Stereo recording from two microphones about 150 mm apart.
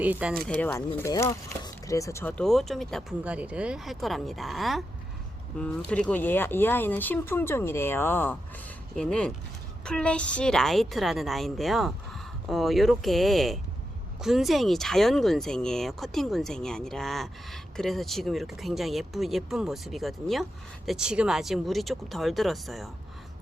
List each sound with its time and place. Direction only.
0.0 s speech: 10° right (ahead or behind)
0.4 s speech: 5° left (ahead or behind)
0.9 s speech: 20° left (ahead or behind)
2.4 s speech: centre (ahead or behind)